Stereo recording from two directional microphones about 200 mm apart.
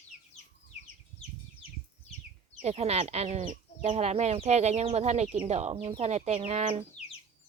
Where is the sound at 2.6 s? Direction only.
30° right (ahead or behind).